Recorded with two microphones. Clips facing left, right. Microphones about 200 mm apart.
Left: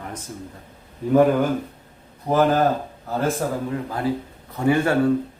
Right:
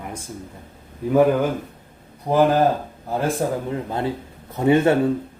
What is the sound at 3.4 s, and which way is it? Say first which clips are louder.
Speech: right 1 dB; 20° right (ahead or behind).